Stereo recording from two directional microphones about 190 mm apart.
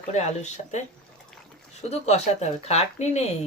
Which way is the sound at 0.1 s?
35° left (ahead or behind).